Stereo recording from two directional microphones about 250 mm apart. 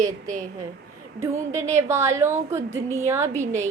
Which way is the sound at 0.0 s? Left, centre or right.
Centre.